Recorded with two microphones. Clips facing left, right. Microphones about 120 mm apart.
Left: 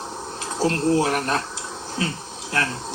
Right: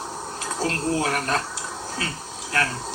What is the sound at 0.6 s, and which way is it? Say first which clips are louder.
Speech: left 5 dB; 25° left (ahead or behind).